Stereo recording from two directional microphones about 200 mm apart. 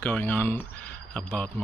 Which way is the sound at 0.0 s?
10° left (ahead or behind).